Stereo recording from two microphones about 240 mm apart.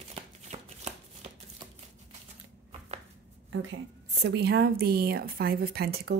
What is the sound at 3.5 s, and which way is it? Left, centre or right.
A woman's voice, right.